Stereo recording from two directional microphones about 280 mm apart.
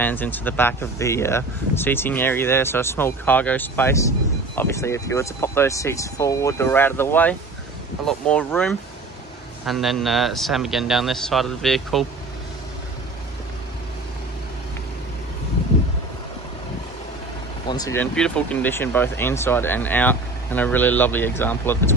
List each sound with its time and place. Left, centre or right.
0.0 s a man's voice: centre
17.6 s speech: centre